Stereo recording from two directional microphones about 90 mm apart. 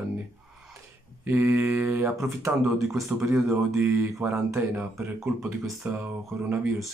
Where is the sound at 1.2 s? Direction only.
25° right (ahead or behind).